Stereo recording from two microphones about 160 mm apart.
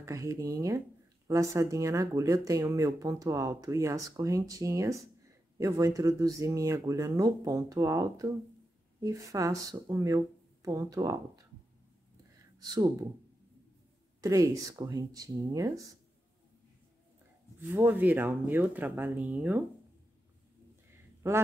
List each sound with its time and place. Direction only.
0.0 s speech: 20° right (ahead or behind)
12.5 s speech: 25° right (ahead or behind)
14.2 s speech: 20° right (ahead or behind)
17.6 s speech: 15° right (ahead or behind)